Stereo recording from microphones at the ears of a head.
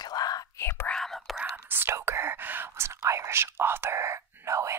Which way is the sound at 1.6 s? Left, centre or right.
Right.